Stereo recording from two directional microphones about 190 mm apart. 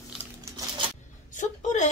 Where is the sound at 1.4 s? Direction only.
40° left (ahead or behind).